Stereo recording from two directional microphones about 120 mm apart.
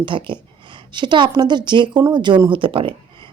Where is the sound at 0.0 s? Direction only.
40° right (ahead or behind).